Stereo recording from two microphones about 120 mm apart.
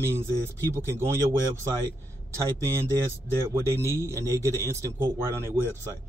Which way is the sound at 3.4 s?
25° right (ahead or behind).